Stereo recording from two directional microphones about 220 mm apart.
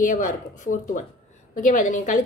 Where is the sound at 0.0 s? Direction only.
35° left (ahead or behind).